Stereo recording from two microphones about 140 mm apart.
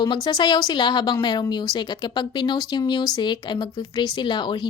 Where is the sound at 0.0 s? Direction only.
30° left (ahead or behind).